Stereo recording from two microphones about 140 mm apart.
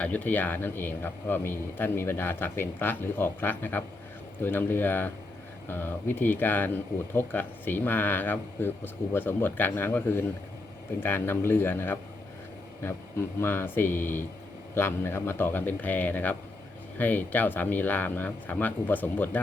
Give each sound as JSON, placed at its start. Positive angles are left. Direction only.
{"t": 0.0, "sound": "a man's voice", "side_deg": 10}
{"t": 13.4, "sound": "a man's voice", "side_deg": 15}